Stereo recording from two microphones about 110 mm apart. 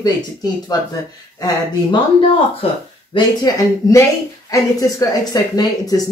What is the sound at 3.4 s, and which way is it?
A woman's voice, 30° left (ahead or behind).